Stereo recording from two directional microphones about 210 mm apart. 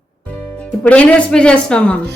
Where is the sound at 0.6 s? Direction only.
5° left (ahead or behind).